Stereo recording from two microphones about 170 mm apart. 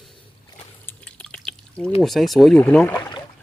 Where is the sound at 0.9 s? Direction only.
5° left (ahead or behind).